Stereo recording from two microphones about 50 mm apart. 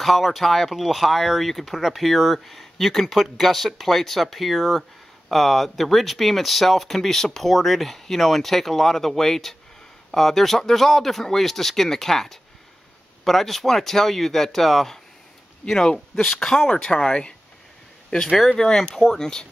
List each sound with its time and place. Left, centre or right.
0.0 s speech: centre